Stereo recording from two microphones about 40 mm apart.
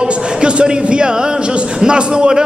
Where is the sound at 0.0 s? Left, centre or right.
Right.